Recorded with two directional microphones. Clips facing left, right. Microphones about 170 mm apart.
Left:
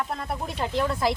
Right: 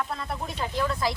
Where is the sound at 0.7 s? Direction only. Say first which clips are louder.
Left 2 dB; 25° left (ahead or behind).